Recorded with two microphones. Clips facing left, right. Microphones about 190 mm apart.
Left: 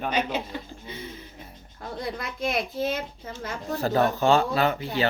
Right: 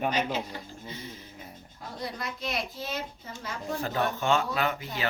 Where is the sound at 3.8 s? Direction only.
35° left (ahead or behind).